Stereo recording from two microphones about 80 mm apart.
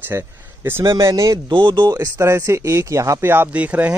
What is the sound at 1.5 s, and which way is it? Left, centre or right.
Speech, right.